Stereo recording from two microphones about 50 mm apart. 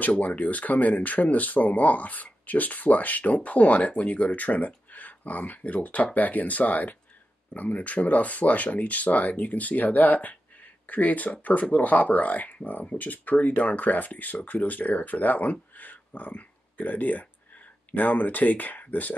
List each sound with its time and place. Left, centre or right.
0.0 s speech: left